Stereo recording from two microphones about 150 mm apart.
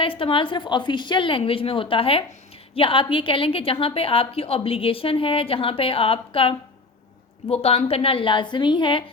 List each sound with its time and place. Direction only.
0.0 s a woman's voice: 35° left (ahead or behind)
7.5 s a woman's voice: 40° left (ahead or behind)